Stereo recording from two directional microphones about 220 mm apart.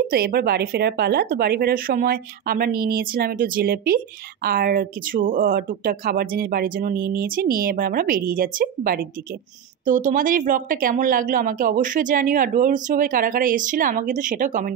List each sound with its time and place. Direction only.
0.1 s speech: 45° right (ahead or behind)